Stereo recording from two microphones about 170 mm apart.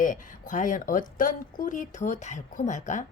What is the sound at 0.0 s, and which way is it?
A woman's voice, 50° left (ahead or behind).